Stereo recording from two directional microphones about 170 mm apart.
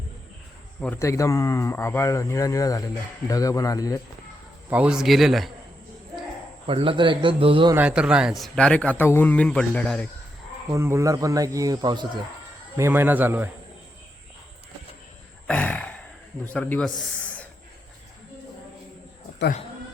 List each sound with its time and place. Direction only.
0.8 s speech: 15° left (ahead or behind)
4.7 s a man's voice: 5° right (ahead or behind)
6.7 s a man's voice: 30° right (ahead or behind)
7.8 s speech: 5° right (ahead or behind)
10.7 s speech: 15° right (ahead or behind)
12.7 s speech: 15° right (ahead or behind)
15.4 s a sound: 10° left (ahead or behind)
16.4 s speech: 10° left (ahead or behind)